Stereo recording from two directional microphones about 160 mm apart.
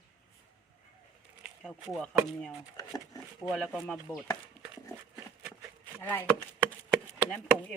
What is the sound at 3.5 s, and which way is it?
Speech, 5° left (ahead or behind).